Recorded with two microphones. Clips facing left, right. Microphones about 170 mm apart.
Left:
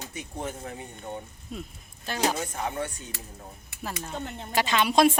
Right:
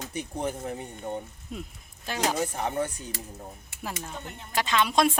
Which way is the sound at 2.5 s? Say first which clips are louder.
Right 2 dB; 35° right (ahead or behind).